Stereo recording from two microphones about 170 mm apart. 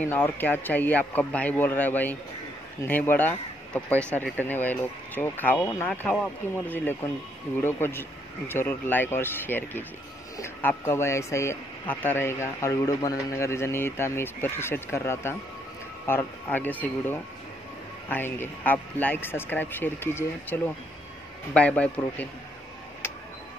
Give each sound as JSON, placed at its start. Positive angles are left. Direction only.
{"t": 0.0, "sound": "speech", "side_deg": 10}
{"t": 21.5, "sound": "speech", "side_deg": 5}